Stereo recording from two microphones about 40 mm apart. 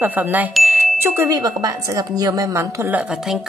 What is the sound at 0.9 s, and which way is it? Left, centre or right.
Speech, right.